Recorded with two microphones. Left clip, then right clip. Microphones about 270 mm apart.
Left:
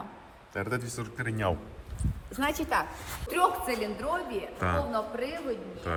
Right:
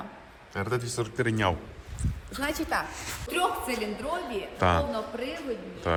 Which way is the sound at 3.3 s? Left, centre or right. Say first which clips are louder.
Left 2 dB; centre.